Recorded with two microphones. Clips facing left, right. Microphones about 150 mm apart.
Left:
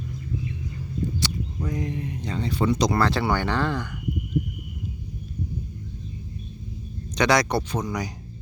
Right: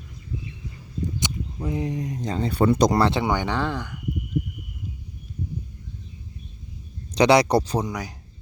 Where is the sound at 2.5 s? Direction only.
55° right (ahead or behind).